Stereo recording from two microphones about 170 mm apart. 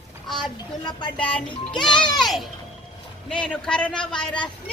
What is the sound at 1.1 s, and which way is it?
A child's voice, 5° left (ahead or behind).